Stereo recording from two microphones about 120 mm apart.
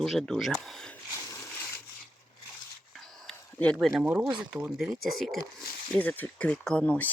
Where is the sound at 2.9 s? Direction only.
Centre (ahead or behind).